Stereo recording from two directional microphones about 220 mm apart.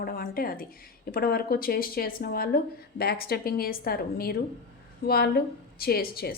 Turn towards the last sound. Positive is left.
turn(degrees=45)  # may be behind; listen again after turning